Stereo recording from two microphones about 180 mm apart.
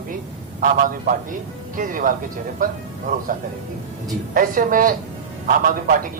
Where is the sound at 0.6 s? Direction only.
50° right (ahead or behind).